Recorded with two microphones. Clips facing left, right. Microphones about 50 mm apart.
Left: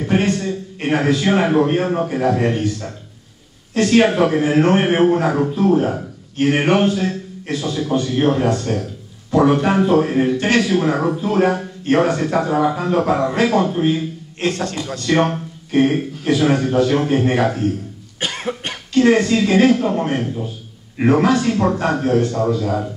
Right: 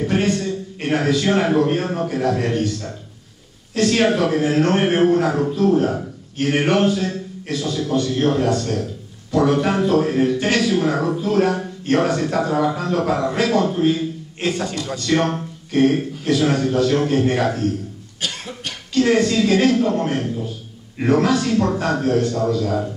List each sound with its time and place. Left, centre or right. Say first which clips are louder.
0.0 s a man's voice: left 1 dB; centre
14.5 s a man's voice: even; centre
14.9 s a man's voice: left 2 dB; centre
18.2 s cough: left 5 dB; left
18.9 s a man's voice: left 2 dB; centre